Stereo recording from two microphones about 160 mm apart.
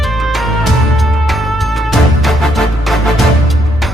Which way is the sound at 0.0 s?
Centre (ahead or behind).